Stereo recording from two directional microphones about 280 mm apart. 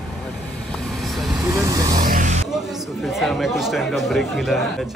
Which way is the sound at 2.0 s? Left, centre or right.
Right.